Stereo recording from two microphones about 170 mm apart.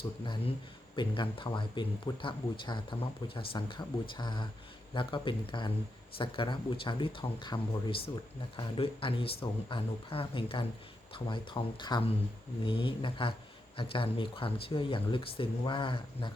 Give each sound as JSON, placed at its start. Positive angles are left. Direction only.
{"t": 0.0, "sound": "speech", "side_deg": 30}